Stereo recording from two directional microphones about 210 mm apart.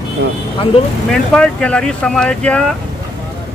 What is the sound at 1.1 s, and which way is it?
Speech, 5° left (ahead or behind).